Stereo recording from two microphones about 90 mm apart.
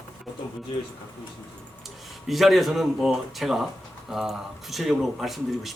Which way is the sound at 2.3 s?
Centre (ahead or behind).